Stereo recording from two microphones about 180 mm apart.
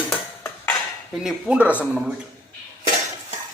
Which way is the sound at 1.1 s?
5° right (ahead or behind).